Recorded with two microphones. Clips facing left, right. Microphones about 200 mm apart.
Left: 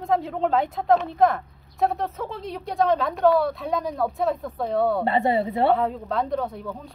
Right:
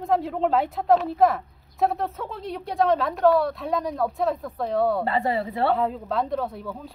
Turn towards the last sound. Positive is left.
turn(degrees=0)  # may be behind; listen again after turning